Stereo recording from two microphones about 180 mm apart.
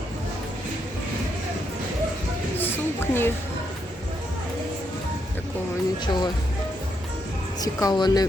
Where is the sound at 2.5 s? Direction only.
15° left (ahead or behind).